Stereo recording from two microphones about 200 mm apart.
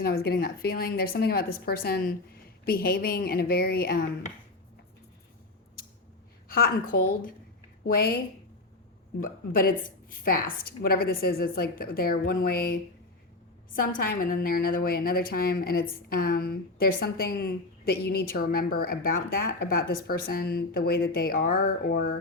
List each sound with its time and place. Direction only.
0.0 s a woman's voice: 50° left (ahead or behind)
6.5 s a woman's voice: 45° left (ahead or behind)
9.2 s a woman's voice: 45° left (ahead or behind)
13.7 s a woman's voice: 45° left (ahead or behind)